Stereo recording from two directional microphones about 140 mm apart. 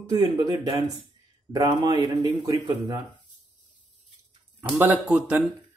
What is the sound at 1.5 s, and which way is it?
Speech, 30° right (ahead or behind).